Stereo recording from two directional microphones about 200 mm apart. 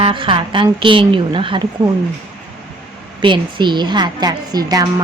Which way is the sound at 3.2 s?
25° right (ahead or behind).